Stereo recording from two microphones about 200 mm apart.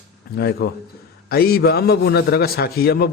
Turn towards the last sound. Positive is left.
turn(degrees=50)  # may be behind; listen again after turning